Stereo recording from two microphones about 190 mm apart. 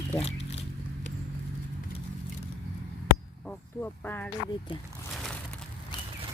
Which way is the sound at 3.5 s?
10° left (ahead or behind).